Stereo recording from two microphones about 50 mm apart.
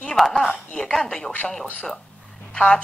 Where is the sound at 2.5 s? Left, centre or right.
Centre.